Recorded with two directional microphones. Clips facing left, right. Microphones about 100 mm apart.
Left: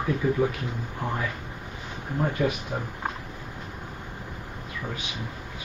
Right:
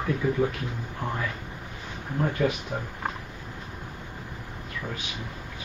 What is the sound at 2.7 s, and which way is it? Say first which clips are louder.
Speech: left 1 dB; 15° left (ahead or behind).